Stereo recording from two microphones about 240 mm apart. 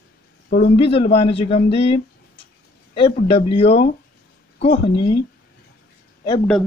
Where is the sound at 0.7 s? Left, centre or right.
Left.